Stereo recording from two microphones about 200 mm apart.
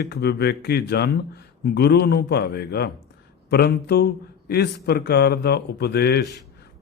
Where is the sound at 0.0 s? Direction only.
55° left (ahead or behind).